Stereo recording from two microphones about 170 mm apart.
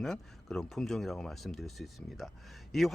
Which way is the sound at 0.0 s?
Centre (ahead or behind).